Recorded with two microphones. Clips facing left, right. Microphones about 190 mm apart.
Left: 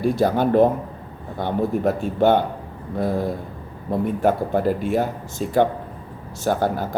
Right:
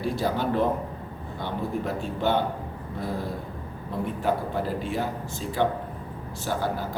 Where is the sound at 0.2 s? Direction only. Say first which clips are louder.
Left 9 dB; 50° left (ahead or behind).